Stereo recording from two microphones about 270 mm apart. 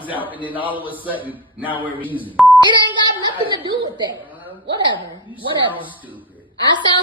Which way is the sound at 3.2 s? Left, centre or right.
Centre.